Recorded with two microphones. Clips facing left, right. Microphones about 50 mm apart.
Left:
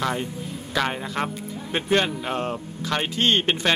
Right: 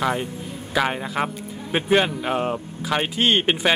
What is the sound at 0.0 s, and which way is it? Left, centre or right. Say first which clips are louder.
Speech: right 2 dB; centre.